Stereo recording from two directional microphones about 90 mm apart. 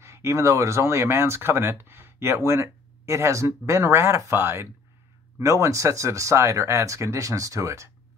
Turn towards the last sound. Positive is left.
turn(degrees=-35)  # may be behind; listen again after turning